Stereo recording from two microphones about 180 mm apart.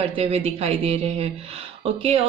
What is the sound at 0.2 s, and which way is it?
Speech, 35° right (ahead or behind).